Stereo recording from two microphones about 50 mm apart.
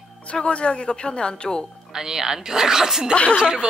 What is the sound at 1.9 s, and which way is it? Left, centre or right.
Speech, centre.